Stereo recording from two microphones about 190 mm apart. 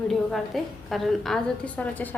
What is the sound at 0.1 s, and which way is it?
A woman's voice, centre (ahead or behind).